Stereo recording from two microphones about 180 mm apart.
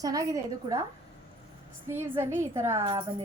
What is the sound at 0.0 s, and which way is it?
Speech, 20° right (ahead or behind).